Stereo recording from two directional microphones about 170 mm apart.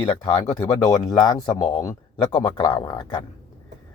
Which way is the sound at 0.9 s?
20° left (ahead or behind).